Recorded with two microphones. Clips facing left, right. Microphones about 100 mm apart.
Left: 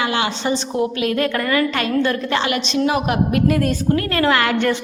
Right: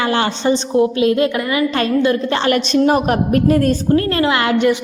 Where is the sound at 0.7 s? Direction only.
25° right (ahead or behind).